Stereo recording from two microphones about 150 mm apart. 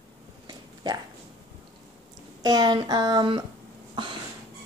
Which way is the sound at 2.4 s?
25° right (ahead or behind).